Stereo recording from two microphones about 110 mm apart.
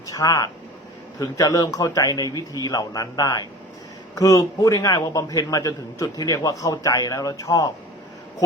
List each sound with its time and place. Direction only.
0.1 s a man's voice: 35° left (ahead or behind)